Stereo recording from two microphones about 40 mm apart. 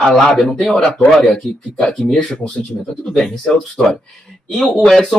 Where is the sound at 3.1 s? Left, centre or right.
Centre.